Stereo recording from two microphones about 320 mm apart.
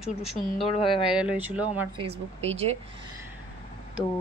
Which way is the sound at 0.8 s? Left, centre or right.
Centre.